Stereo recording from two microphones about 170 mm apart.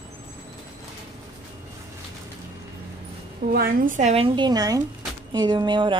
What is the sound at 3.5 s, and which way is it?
A woman's voice, 55° right (ahead or behind).